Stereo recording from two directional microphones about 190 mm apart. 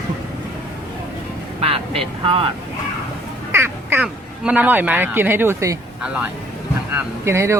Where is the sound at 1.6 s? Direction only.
30° right (ahead or behind).